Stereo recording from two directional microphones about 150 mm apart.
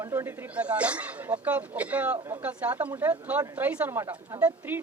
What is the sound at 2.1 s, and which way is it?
Speech, 20° right (ahead or behind).